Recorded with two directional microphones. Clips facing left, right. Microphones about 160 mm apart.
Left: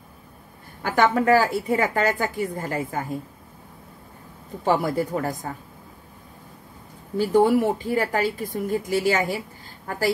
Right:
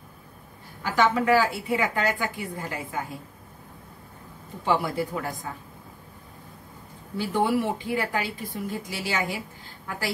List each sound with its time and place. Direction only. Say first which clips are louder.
0.8 s speech: left 3 dB; 50° left (ahead or behind)
4.6 s speech: left 3 dB; 45° left (ahead or behind)
7.2 s speech: left 6 dB; 40° left (ahead or behind)